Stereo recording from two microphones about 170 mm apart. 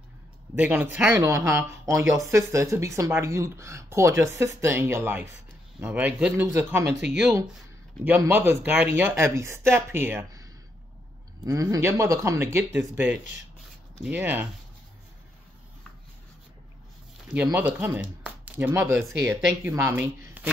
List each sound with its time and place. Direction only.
0.6 s speech: 10° right (ahead or behind)
8.0 s speech: 10° right (ahead or behind)
17.6 s speech: 10° right (ahead or behind)